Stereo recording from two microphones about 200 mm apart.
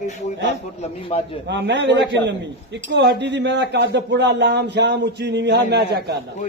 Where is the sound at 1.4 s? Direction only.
60° right (ahead or behind).